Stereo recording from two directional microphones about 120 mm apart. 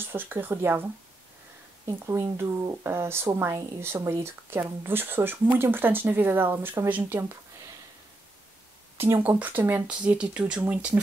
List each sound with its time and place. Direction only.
0.0 s speech: 15° right (ahead or behind)
1.9 s speech: 20° right (ahead or behind)
8.9 s speech: 20° right (ahead or behind)